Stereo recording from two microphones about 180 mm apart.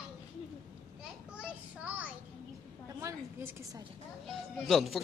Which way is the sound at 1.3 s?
5° right (ahead or behind).